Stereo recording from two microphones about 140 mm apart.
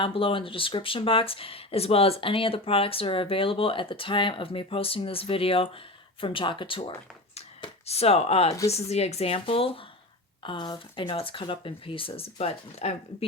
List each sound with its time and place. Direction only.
0.0 s speech: 40° left (ahead or behind)
7.3 s a sound: 45° left (ahead or behind)
8.7 s speech: 50° left (ahead or behind)